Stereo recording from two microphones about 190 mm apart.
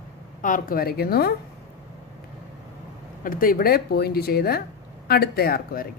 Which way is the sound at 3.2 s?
50° left (ahead or behind).